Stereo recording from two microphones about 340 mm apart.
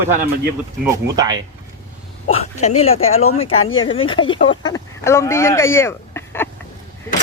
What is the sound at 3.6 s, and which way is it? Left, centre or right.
Speech, left.